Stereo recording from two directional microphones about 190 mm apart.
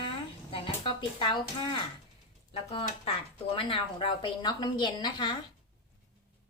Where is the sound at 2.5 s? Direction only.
30° left (ahead or behind).